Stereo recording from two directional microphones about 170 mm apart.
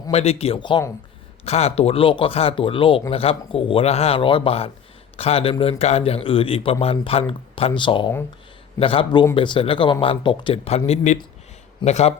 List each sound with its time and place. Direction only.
0.1 s a man's voice: 35° left (ahead or behind)